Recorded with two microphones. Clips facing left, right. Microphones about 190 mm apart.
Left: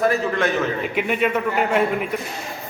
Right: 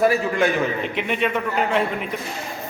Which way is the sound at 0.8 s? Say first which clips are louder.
Left 2 dB; 5° left (ahead or behind).